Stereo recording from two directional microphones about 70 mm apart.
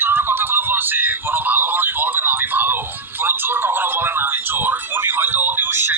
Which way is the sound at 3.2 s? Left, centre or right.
Right.